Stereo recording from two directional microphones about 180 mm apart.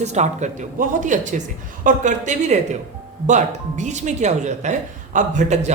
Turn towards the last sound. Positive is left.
turn(degrees=-40)  # may be behind; listen again after turning